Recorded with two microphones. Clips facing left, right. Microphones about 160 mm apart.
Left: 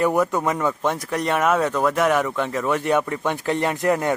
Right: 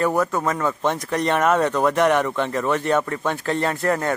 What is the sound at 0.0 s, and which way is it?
Speech, 15° left (ahead or behind).